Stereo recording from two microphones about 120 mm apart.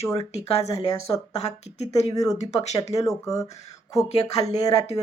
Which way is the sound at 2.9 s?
30° left (ahead or behind).